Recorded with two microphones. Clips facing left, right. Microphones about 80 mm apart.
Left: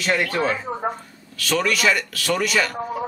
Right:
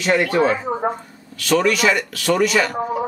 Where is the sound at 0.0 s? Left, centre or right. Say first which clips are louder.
Right 5 dB; centre.